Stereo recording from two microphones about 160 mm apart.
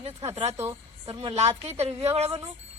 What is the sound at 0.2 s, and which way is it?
Speech, 45° right (ahead or behind).